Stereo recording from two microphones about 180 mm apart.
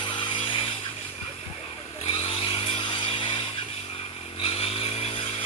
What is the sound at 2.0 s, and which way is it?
Chainsaw, 30° left (ahead or behind).